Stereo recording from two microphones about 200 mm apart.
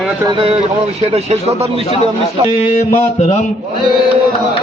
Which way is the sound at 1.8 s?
30° left (ahead or behind).